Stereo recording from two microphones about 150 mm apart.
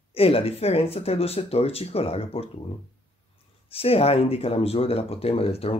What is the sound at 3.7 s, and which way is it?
Speech, 40° left (ahead or behind).